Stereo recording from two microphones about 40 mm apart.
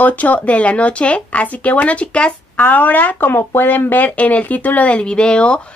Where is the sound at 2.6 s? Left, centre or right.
Left.